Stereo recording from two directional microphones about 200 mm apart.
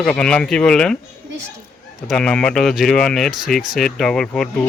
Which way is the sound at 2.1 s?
5° left (ahead or behind).